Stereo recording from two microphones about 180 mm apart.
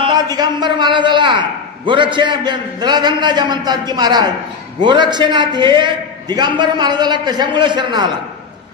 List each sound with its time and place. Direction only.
0.0 s a man's voice: 25° right (ahead or behind)